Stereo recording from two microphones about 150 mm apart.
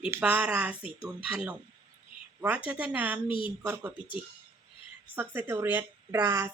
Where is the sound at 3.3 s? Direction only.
35° left (ahead or behind).